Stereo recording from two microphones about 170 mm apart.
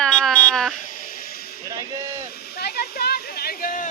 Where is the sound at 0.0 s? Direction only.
5° left (ahead or behind).